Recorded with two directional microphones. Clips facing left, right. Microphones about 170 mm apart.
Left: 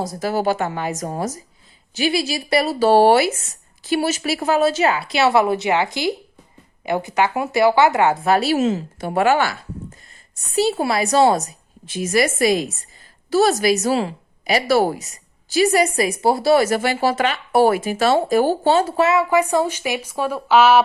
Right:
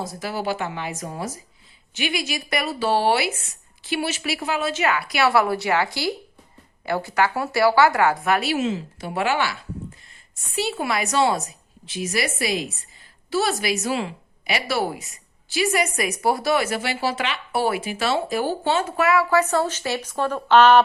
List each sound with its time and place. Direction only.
0.0 s a woman's voice: 40° left (ahead or behind)
10.5 s a woman's voice: 35° left (ahead or behind); by 20.8 s 5° left (ahead or behind)